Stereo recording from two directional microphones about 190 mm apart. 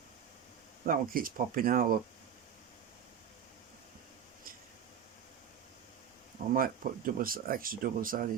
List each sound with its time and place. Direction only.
0.9 s speech: 50° right (ahead or behind)
6.5 s speech: 50° right (ahead or behind)